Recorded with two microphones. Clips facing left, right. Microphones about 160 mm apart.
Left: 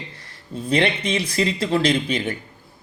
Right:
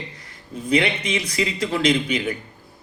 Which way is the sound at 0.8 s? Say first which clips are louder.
Left 2 dB; 35° left (ahead or behind).